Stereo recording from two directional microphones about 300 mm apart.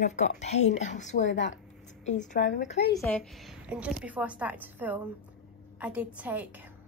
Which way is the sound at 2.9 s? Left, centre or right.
Centre.